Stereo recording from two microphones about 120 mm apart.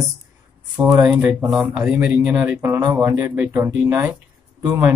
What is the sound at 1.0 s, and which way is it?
A woman's voice, 10° right (ahead or behind).